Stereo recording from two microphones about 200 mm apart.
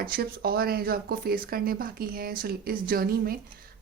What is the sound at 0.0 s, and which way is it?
Speech, 50° right (ahead or behind).